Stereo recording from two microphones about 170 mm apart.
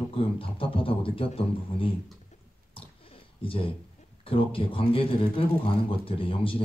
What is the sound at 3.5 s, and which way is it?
Speech, 30° left (ahead or behind).